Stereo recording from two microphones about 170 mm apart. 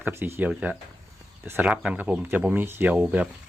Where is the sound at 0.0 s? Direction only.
15° right (ahead or behind).